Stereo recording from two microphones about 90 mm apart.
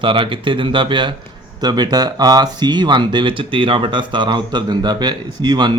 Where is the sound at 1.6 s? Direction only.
50° right (ahead or behind).